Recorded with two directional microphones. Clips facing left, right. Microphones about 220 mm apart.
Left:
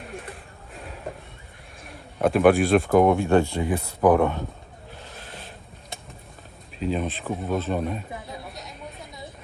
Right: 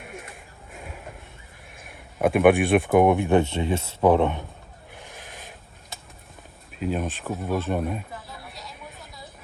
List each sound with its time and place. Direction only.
0.0 s music: centre (ahead or behind)
0.7 s a sound: centre (ahead or behind)
1.8 s a man's voice: centre (ahead or behind)
2.9 s speech: 15° right (ahead or behind)
4.9 s goat: 15° right (ahead or behind)
6.7 s speech: 5° right (ahead or behind)
8.1 s a sound: 20° left (ahead or behind)